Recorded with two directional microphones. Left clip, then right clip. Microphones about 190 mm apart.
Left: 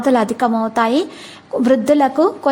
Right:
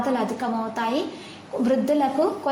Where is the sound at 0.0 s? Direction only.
50° left (ahead or behind).